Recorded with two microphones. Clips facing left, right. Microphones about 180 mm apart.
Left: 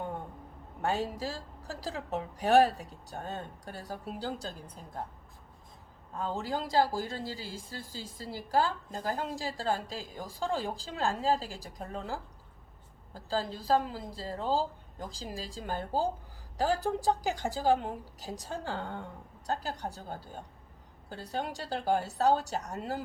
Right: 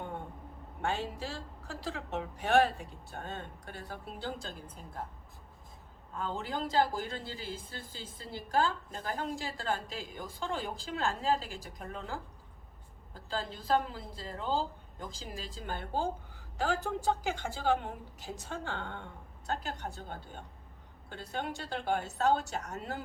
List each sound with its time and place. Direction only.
0.8 s a woman's voice: 40° left (ahead or behind)
6.2 s a woman's voice: 35° left (ahead or behind)